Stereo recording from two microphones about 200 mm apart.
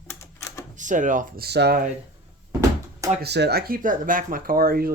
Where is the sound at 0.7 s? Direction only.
40° right (ahead or behind).